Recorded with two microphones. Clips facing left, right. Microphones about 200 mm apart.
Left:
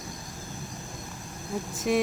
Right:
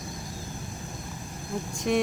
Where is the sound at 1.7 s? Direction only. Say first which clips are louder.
Even; centre (ahead or behind).